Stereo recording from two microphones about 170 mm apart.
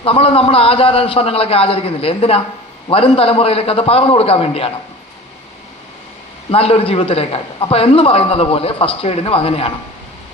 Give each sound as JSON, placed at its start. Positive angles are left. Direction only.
{"t": 0.0, "sound": "a man's voice", "side_deg": 35}
{"t": 6.5, "sound": "a man's voice", "side_deg": 35}